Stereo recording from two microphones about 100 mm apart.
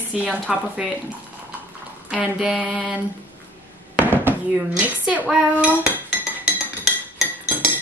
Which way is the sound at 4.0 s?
20° right (ahead or behind).